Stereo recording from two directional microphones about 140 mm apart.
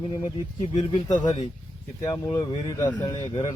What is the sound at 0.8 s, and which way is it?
Speech, 40° left (ahead or behind).